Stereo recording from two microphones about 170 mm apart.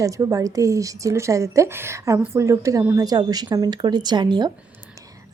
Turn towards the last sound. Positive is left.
turn(degrees=-25)  # may be behind; listen again after turning